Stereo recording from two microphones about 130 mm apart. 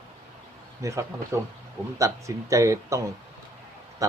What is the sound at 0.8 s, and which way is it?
Speech, 25° right (ahead or behind).